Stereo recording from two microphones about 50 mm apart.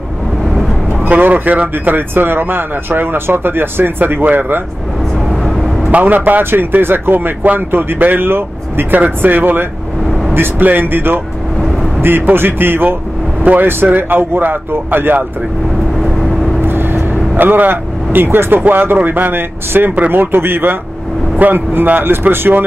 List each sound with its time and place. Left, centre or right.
1.0 s speech: right
5.3 s vehicle: centre
5.9 s speech: right
16.6 s vehicle: right
17.4 s speech: right